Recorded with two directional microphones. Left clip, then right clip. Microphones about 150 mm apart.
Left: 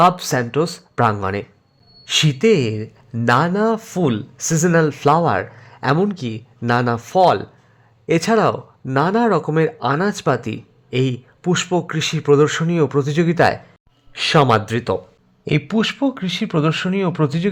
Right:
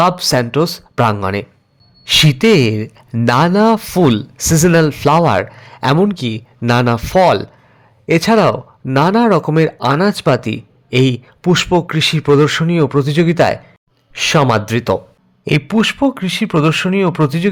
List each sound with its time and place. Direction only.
0.0 s speech: 15° right (ahead or behind)
2.0 s speech: 25° right (ahead or behind)